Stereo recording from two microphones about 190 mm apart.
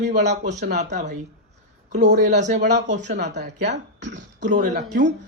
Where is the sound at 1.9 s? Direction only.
60° right (ahead or behind).